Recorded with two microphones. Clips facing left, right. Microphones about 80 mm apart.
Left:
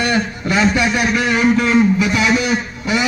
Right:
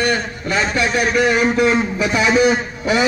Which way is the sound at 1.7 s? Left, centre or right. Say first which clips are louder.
Left 4 dB; right.